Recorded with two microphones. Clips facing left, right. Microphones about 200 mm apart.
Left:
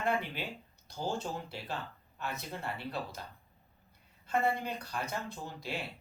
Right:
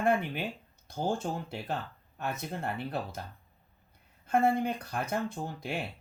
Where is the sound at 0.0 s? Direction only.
50° right (ahead or behind).